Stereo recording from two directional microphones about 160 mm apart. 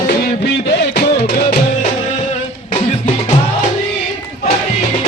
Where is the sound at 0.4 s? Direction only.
85° left.